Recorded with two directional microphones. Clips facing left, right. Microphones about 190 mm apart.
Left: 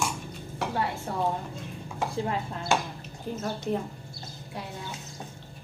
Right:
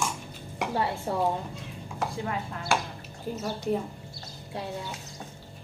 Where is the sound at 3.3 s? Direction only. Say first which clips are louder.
Right 1 dB; 5° right (ahead or behind).